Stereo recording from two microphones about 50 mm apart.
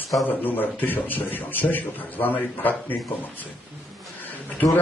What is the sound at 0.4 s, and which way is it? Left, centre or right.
A man's voice, left.